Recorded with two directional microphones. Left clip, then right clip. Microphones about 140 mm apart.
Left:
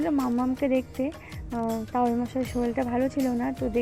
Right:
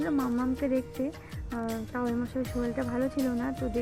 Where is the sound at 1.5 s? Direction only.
Centre (ahead or behind).